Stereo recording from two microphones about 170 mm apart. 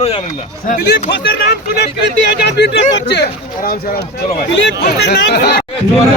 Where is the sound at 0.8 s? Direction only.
90° left; by 5.6 s 70° left (ahead or behind).